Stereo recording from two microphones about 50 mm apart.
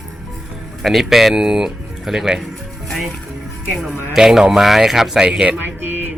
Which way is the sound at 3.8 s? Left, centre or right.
Centre.